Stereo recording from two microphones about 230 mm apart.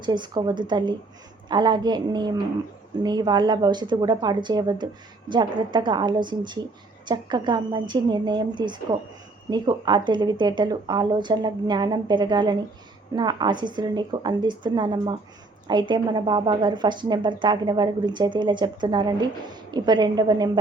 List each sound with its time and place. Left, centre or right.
0.0 s a woman's voice: centre